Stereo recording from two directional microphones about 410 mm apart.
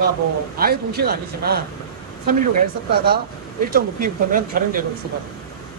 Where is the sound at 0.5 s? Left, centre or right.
Right.